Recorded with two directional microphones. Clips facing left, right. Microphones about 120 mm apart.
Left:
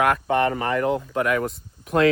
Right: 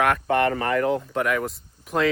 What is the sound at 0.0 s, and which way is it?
Speech, 25° left (ahead or behind).